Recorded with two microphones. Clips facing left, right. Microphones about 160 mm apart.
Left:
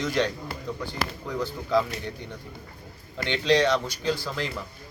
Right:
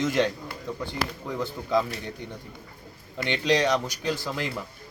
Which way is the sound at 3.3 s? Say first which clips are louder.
Left 1 dB; 15° right (ahead or behind).